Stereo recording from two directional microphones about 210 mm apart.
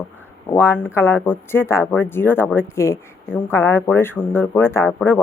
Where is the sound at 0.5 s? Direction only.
10° left (ahead or behind).